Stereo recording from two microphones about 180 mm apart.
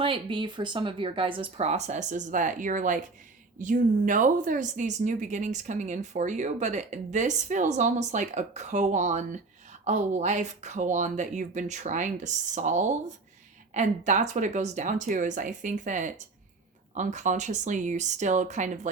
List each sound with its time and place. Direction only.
0.0 s speech: 30° right (ahead or behind)